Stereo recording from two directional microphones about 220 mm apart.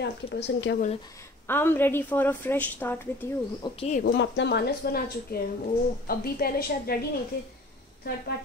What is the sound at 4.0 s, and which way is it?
A woman's voice, 50° left (ahead or behind).